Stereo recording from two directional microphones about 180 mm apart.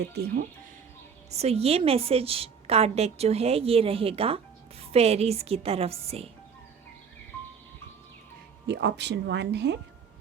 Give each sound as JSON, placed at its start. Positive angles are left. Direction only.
{"t": 0.1, "sound": "speech", "side_deg": -60}
{"t": 1.4, "sound": "a woman's voice", "side_deg": -35}
{"t": 8.6, "sound": "speech", "side_deg": -70}